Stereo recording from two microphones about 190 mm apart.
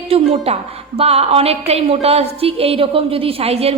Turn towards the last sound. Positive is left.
turn(degrees=-30)  # may be behind; listen again after turning